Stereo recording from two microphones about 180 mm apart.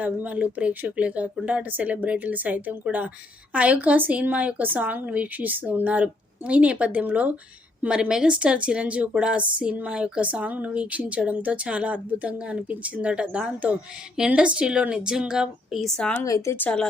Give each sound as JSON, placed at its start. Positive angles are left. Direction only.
{"t": 0.0, "sound": "a woman's voice", "side_deg": -10}
{"t": 16.2, "sound": "speech", "side_deg": 15}